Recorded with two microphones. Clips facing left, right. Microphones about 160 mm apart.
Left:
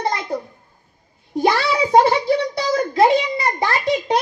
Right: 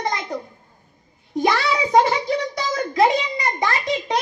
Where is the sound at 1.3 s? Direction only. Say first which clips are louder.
Left 2 dB; 30° left (ahead or behind).